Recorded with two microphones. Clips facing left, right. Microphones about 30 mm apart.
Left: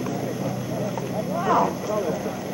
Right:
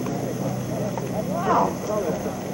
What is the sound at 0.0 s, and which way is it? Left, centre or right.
Vehicle, centre.